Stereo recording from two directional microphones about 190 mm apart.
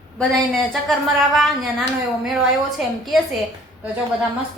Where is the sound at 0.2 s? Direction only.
Centre (ahead or behind).